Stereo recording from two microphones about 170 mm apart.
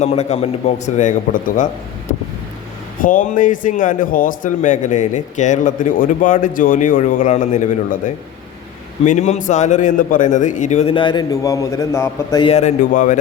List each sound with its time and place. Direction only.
0.0 s a man's voice: 40° left (ahead or behind); by 12.4 s 15° left (ahead or behind)
12.4 s a man's voice: 35° left (ahead or behind)